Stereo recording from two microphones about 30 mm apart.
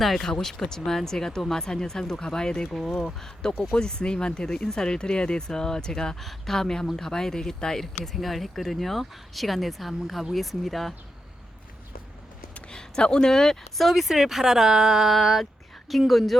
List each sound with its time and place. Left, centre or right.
0.2 s speech: centre
2.6 s speech: centre
3.2 s speech: centre
3.8 s speech: left
6.1 s speech: centre
8.1 s speech: centre
12.6 s a sound: left
13.2 s speech: left
13.7 s speech: centre
15.1 s speech: centre